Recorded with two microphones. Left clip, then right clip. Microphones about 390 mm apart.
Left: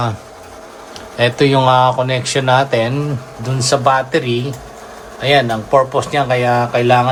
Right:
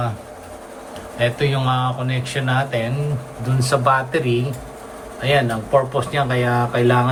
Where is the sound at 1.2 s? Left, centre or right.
Centre.